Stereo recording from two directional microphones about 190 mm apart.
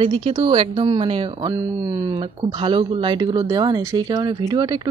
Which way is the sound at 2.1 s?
25° right (ahead or behind).